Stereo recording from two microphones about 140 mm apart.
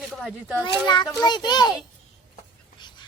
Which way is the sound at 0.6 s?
30° left (ahead or behind).